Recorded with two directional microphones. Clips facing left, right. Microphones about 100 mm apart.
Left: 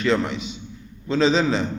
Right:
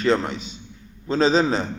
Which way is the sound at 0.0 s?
35° right (ahead or behind).